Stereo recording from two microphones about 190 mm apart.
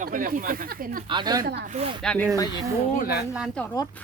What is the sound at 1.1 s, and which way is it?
Speech, 25° right (ahead or behind).